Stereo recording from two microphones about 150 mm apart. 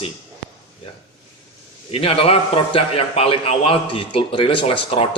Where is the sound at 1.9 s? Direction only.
40° left (ahead or behind).